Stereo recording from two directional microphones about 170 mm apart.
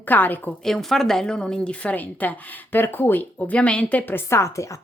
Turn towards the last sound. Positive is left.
turn(degrees=15)  # may be behind; listen again after turning